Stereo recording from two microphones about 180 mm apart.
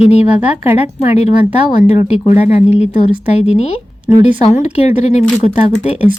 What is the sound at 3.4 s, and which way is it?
Speech, 35° left (ahead or behind).